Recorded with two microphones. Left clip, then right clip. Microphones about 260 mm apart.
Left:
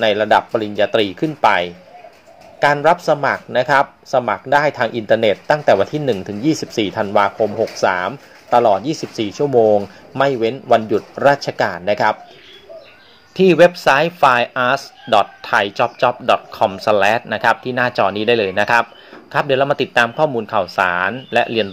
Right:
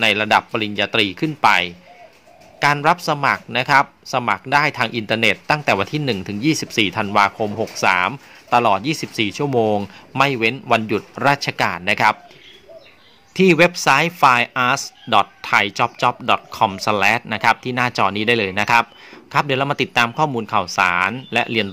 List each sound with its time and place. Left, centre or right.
0.0 s speech: right
13.3 s speech: right